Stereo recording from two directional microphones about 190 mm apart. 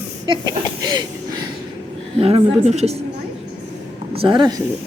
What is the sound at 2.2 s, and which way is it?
Speech, 30° right (ahead or behind).